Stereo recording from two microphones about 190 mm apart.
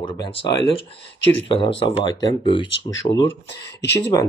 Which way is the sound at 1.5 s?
30° left (ahead or behind).